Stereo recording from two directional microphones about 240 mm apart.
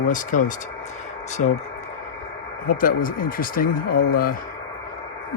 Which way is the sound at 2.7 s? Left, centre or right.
Left.